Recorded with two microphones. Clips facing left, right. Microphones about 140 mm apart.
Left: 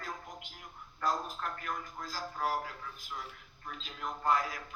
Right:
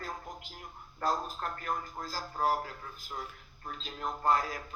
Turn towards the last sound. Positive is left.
turn(degrees=-35)  # may be behind; listen again after turning